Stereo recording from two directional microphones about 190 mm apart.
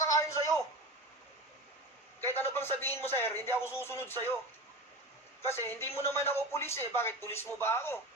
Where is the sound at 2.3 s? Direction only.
10° left (ahead or behind).